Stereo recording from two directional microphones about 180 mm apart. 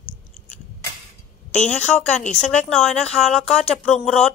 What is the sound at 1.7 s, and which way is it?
Speech, 5° left (ahead or behind).